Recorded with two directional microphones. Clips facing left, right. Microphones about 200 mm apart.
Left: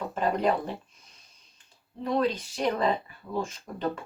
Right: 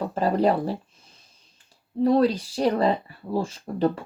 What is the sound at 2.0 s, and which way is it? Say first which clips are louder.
Speech: right 7 dB; 35° right (ahead or behind).